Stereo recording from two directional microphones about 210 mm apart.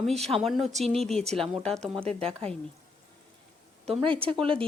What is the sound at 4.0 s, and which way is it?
Speech, 25° right (ahead or behind).